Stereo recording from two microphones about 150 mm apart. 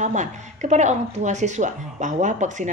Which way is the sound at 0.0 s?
50° right (ahead or behind).